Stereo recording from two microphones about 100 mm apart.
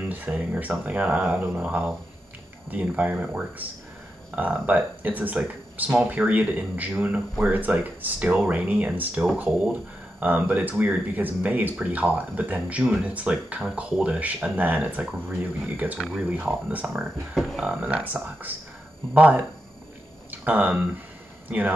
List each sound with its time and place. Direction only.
0.1 s speech: 15° right (ahead or behind)
10.2 s speech: 15° right (ahead or behind)
17.8 s speech: 15° right (ahead or behind)